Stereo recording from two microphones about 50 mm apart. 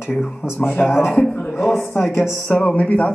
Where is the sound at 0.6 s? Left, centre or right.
Left.